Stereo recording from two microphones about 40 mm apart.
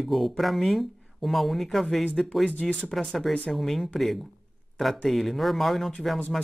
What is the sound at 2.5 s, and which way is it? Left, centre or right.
Speech, left.